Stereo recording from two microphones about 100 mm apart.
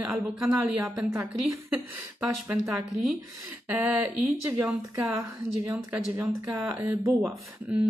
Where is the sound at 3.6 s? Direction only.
15° right (ahead or behind).